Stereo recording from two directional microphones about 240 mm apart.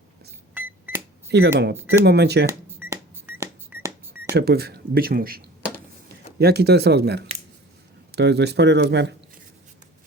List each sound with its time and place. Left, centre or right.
0.5 s cash register: centre
1.3 s speech: right
2.5 s cash register: centre
4.4 s speech: right
6.4 s speech: right